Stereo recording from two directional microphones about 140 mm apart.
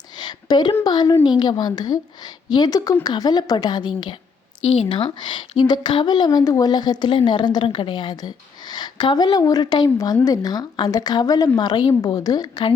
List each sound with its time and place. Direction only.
0.2 s a woman's voice: 30° left (ahead or behind)
4.6 s a woman's voice: 45° left (ahead or behind); by 12.7 s 30° left (ahead or behind)